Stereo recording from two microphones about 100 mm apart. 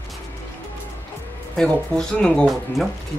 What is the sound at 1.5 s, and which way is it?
Speech, 5° left (ahead or behind).